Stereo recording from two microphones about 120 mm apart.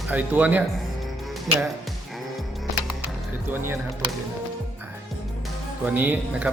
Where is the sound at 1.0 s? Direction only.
Centre (ahead or behind).